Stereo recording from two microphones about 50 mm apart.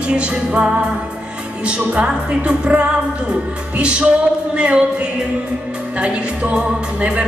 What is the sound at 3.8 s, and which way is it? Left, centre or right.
Music, right.